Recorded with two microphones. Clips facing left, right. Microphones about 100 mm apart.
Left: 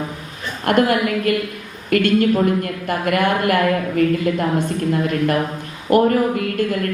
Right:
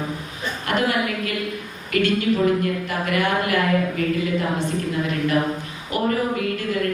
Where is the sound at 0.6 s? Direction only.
50° left (ahead or behind).